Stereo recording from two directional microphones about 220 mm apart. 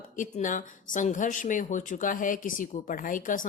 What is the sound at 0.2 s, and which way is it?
Speech, 35° left (ahead or behind).